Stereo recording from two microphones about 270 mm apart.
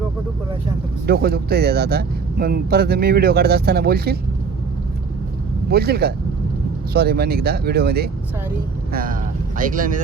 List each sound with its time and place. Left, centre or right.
1.0 s speech: right
5.7 s speech: right